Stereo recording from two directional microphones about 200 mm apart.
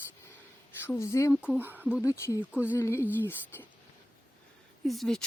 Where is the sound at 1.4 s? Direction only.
5° right (ahead or behind).